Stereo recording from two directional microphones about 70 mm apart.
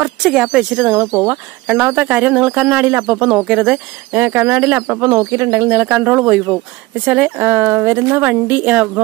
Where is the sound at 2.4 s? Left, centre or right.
Centre.